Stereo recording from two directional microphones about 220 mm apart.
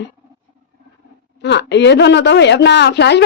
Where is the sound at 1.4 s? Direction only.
50° left (ahead or behind).